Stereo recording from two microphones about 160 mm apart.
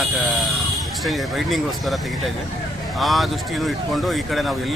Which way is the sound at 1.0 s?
Centre (ahead or behind).